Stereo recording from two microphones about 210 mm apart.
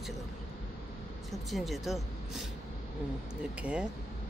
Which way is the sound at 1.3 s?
Centre (ahead or behind).